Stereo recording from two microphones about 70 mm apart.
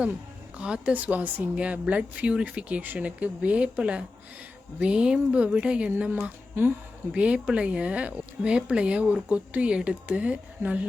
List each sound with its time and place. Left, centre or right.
0.5 s a woman's voice: centre
6.2 s speech: right
7.1 s speech: centre